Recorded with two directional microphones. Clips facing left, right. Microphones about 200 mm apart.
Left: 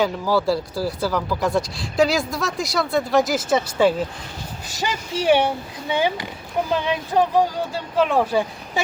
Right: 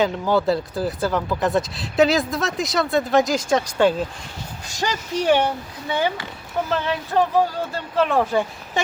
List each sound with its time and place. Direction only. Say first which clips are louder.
0.4 s speech: even; centre (ahead or behind)